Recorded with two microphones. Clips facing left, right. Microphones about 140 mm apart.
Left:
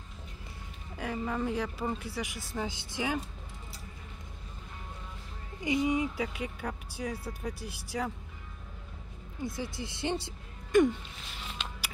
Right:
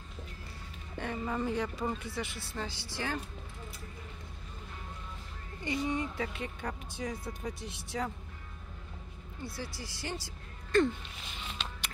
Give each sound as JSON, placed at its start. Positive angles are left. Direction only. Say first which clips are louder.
{"t": 0.9, "sound": "speech", "louder": "left 1 dB", "side_deg": 5}
{"t": 5.6, "sound": "speech", "louder": "left 5 dB", "side_deg": 15}
{"t": 9.4, "sound": "speech", "louder": "left 5 dB", "side_deg": 20}